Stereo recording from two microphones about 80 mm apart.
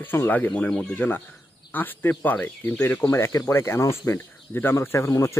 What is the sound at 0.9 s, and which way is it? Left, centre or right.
Speech, left.